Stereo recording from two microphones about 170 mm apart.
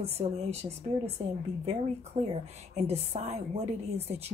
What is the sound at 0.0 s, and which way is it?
Speech, 35° right (ahead or behind).